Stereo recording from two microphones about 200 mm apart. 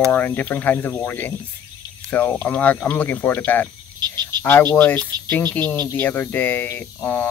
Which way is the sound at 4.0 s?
20° right (ahead or behind).